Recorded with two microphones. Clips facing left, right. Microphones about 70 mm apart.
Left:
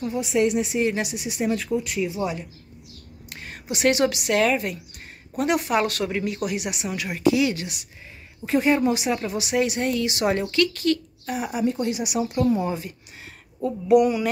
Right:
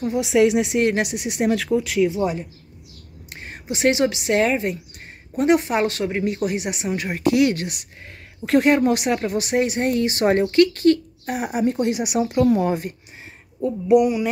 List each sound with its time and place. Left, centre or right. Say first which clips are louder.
0.1 s speech: right 5 dB; right
2.0 s speech: right 5 dB; right
3.3 s a sound: right 2 dB; right
3.7 s a woman's voice: right 2 dB; right
8.5 s speech: right 4 dB; right
13.8 s a sound: right 1 dB; centre